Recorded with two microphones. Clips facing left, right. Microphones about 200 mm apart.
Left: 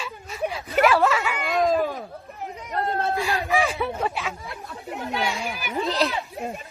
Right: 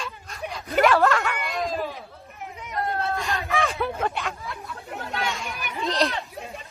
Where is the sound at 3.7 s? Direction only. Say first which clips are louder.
Even; centre (ahead or behind).